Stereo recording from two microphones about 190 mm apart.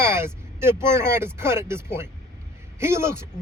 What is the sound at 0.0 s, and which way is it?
Speech, 15° right (ahead or behind).